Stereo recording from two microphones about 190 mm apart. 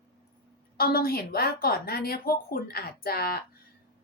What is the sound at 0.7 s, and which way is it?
A woman's voice, 50° left (ahead or behind).